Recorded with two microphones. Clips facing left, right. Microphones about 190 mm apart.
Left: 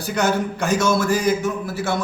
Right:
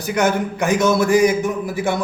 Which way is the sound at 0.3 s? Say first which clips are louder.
Right 2 dB; 15° right (ahead or behind).